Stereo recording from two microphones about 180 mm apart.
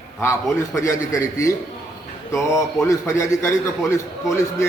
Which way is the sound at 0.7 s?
15° left (ahead or behind).